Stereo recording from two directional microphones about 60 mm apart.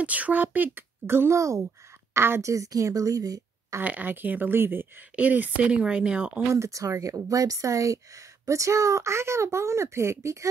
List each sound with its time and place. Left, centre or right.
0.0 s speech: right
1.3 s a woman's voice: right
2.1 s a woman's voice: right
2.4 s speech: right
3.8 s speech: right
5.1 s speech: right
6.5 s a woman's voice: right